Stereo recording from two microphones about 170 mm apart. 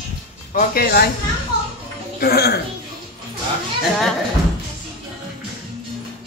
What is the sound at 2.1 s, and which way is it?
Speech, 65° left (ahead or behind).